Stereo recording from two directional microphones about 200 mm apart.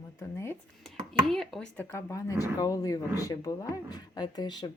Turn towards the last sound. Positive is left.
turn(degrees=20)  # may be behind; listen again after turning